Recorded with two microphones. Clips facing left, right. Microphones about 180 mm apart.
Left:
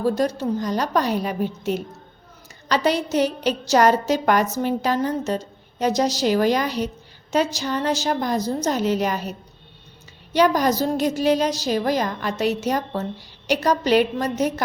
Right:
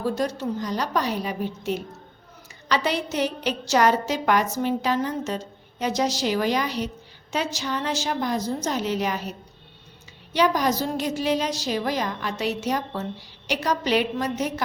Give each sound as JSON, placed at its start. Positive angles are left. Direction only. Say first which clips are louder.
{"t": 0.2, "sound": "a woman's voice", "louder": "left 4 dB", "side_deg": 40}
{"t": 10.3, "sound": "a woman's voice", "louder": "left 4 dB", "side_deg": 45}